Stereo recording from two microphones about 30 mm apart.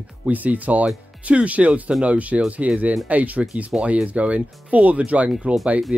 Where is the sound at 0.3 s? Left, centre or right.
Right.